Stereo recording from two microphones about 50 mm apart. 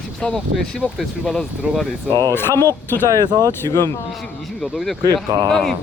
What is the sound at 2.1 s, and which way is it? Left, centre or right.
Speech, left.